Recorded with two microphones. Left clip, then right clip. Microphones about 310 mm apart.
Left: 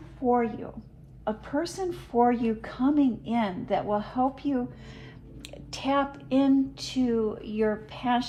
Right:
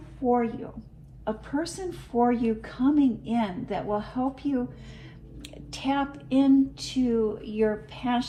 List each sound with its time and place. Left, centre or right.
0.3 s a woman's voice: left